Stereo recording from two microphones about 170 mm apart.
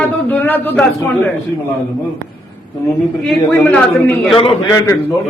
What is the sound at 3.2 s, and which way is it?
A man's voice, 5° left (ahead or behind).